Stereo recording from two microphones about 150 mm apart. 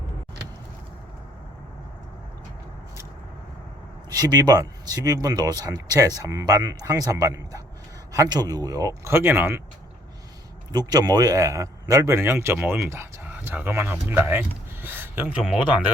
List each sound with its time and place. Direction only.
4.1 s speech: 25° right (ahead or behind)
10.7 s speech: 25° right (ahead or behind); by 15.7 s 10° right (ahead or behind)